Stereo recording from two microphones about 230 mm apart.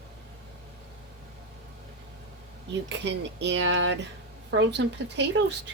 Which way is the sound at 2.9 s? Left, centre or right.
Right.